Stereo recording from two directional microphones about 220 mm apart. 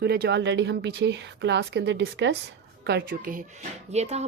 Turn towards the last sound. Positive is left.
turn(degrees=-30)  # may be behind; listen again after turning